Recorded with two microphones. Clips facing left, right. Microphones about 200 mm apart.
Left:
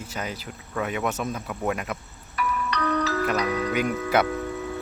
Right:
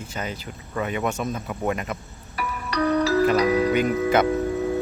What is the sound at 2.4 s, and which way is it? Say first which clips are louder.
Music: right 2 dB; 30° right (ahead or behind).